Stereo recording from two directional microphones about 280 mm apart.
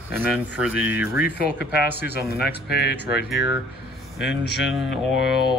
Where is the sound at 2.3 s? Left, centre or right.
Left.